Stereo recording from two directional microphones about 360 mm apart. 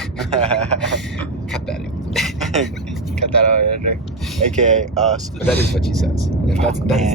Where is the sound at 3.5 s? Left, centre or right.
Right.